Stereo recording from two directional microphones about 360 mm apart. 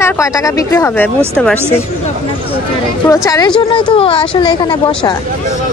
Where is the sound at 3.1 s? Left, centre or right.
Centre.